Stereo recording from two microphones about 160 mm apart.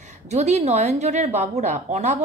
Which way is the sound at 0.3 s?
45° right (ahead or behind).